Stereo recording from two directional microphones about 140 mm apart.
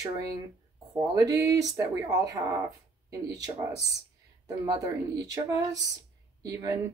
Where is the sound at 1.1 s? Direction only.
25° right (ahead or behind).